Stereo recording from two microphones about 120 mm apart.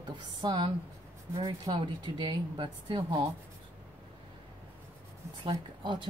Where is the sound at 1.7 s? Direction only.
40° right (ahead or behind).